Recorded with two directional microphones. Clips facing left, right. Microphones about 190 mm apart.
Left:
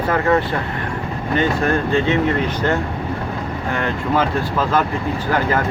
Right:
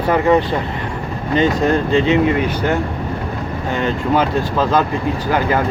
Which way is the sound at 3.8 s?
20° right (ahead or behind).